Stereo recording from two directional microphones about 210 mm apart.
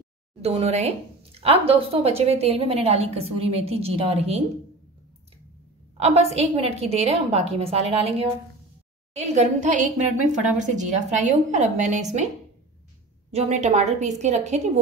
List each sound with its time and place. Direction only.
0.4 s speech: 30° right (ahead or behind)
5.9 s a woman's voice: 30° right (ahead or behind)
13.3 s a woman's voice: 30° right (ahead or behind)